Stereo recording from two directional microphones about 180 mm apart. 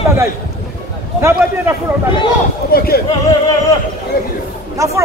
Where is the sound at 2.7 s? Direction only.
55° left (ahead or behind).